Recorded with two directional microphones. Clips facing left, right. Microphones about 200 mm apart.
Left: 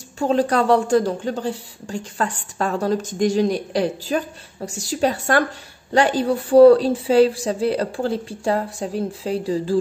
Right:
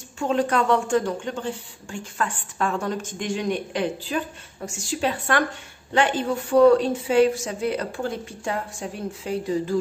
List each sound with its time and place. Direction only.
0.2 s a woman's voice: 35° left (ahead or behind)